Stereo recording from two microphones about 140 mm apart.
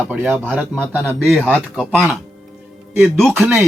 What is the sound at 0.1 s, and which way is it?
Speech, 15° right (ahead or behind).